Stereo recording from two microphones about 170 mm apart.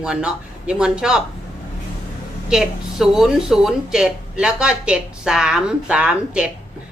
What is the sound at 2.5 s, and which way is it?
Speech, centre (ahead or behind).